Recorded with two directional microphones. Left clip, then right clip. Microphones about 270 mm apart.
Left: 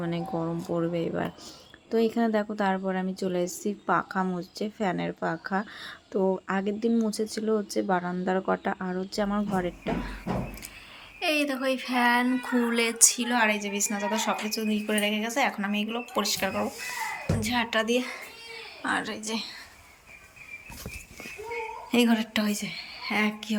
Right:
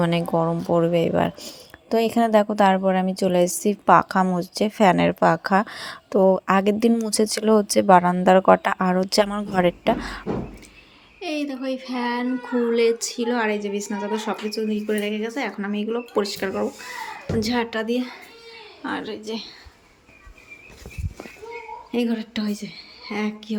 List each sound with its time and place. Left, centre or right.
0.0 s speech: right
11.2 s a woman's voice: centre
21.9 s a woman's voice: centre